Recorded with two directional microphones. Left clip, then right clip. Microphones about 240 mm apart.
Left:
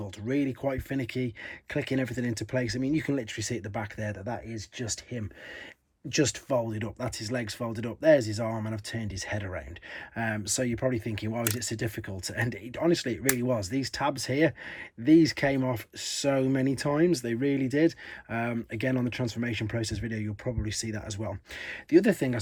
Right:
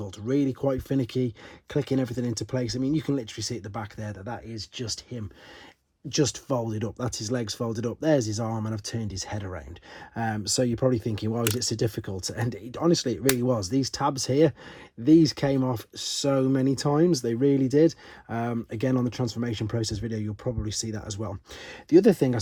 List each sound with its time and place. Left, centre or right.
0.0 s speech: centre